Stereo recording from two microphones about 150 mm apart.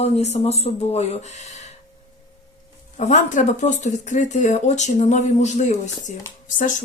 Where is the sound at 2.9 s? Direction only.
55° left (ahead or behind).